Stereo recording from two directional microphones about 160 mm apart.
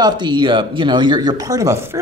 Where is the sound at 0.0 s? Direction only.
30° right (ahead or behind).